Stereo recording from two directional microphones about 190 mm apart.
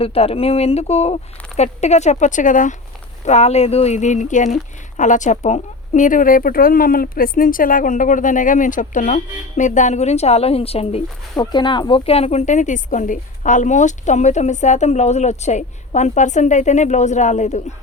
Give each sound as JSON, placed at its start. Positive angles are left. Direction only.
{"t": 0.0, "sound": "speech", "side_deg": 30}